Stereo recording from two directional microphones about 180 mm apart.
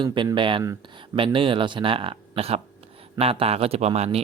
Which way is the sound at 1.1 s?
30° right (ahead or behind).